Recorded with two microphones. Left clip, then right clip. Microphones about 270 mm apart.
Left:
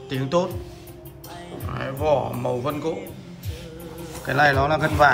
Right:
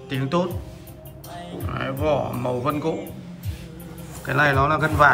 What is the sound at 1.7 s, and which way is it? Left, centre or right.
Speech, centre.